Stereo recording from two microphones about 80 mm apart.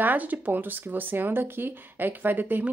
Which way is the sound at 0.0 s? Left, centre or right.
Right.